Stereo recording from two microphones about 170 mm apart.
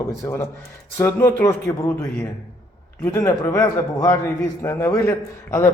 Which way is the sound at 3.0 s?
15° left (ahead or behind).